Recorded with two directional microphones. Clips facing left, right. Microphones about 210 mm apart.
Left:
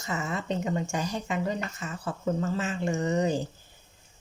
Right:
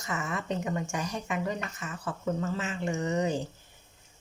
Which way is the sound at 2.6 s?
35° left (ahead or behind).